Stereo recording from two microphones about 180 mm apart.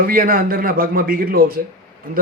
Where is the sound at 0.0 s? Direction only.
50° right (ahead or behind).